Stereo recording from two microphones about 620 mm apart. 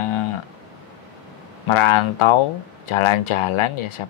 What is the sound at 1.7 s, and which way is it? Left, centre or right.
Speech, left.